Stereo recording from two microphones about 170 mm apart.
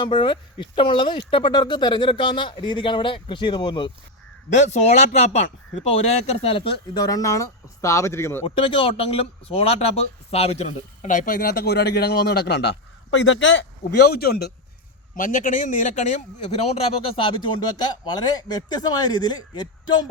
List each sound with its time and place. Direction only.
0.0 s speech: 30° left (ahead or behind)
4.4 s speech: 40° left (ahead or behind); by 8.4 s 15° left (ahead or behind)
8.4 s speech: 30° left (ahead or behind); by 14.5 s 65° left (ahead or behind)
15.1 s a man's voice: 50° left (ahead or behind); by 20.1 s 25° left (ahead or behind)